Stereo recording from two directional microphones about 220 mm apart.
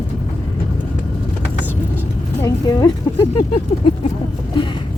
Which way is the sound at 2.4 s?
15° left (ahead or behind).